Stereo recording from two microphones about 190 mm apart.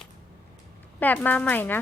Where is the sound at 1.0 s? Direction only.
10° left (ahead or behind).